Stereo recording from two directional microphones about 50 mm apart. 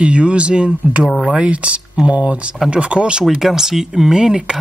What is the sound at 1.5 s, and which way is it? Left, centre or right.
Speech, right.